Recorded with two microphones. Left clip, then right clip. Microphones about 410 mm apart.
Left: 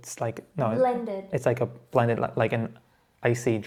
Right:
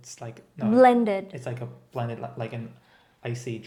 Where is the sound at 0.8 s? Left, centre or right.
Right.